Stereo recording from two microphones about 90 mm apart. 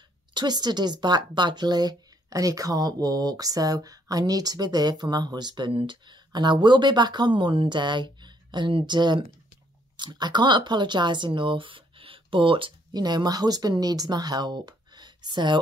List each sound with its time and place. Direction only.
0.3 s a woman's voice: 55° right (ahead or behind); by 12.7 s 75° right (ahead or behind)
12.9 s a woman's voice: 50° right (ahead or behind)